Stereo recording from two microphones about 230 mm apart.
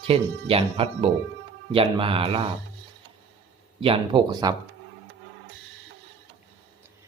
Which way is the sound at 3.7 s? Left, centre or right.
Right.